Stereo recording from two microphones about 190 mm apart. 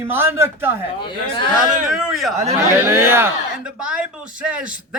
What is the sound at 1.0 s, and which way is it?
Speech, 25° left (ahead or behind).